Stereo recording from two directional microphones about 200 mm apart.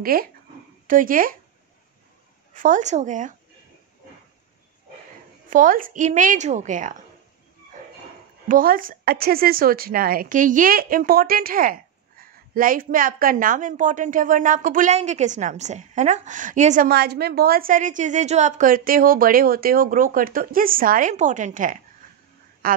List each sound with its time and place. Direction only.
0.0 s a woman's voice: 45° right (ahead or behind)
2.5 s a woman's voice: 40° right (ahead or behind)
5.5 s a woman's voice: 40° right (ahead or behind)
8.5 s a woman's voice: 45° right (ahead or behind)
16.9 s a woman's voice: 55° right (ahead or behind)